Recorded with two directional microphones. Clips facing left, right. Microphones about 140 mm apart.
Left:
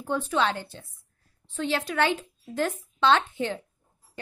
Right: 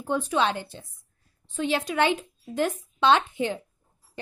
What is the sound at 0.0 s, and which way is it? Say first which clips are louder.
A woman's voice: right 1 dB; 15° right (ahead or behind).